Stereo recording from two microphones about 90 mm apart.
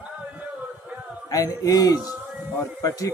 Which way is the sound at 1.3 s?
40° left (ahead or behind).